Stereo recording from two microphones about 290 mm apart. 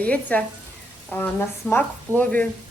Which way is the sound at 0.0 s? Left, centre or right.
Centre.